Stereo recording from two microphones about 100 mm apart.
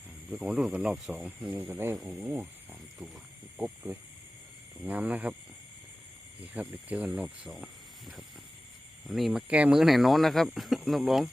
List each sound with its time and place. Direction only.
0.3 s speech: 10° right (ahead or behind)
1.5 s speech: 20° right (ahead or behind)
6.5 s speech: 15° right (ahead or behind)
7.5 s speech: centre (ahead or behind)
9.5 s speech: 10° right (ahead or behind)